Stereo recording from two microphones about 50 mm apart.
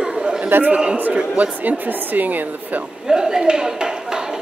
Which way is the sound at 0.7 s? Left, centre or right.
Right.